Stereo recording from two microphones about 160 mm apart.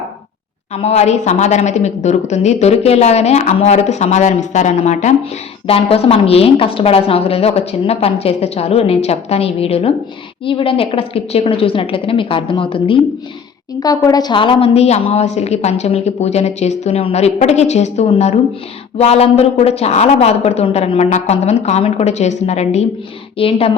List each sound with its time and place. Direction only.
0.7 s a woman's voice: 40° left (ahead or behind)
13.7 s a woman's voice: 25° left (ahead or behind)